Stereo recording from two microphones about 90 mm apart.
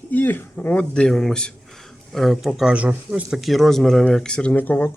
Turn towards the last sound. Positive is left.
turn(degrees=20)  # may be behind; listen again after turning